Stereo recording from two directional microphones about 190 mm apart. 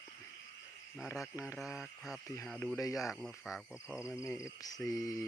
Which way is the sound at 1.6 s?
Centre (ahead or behind).